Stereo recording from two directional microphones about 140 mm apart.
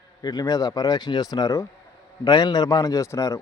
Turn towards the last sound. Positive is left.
turn(degrees=20)  # may be behind; listen again after turning